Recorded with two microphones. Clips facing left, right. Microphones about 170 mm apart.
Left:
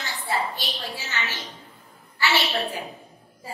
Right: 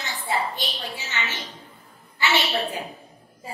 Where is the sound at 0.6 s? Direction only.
20° right (ahead or behind).